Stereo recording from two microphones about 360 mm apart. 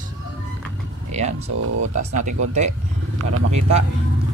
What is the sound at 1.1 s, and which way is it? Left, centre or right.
Speech, centre.